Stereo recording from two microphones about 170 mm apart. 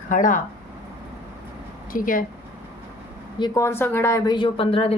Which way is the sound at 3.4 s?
15° left (ahead or behind).